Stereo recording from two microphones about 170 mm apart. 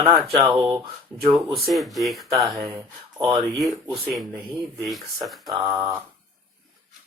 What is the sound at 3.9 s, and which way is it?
Speech, centre (ahead or behind).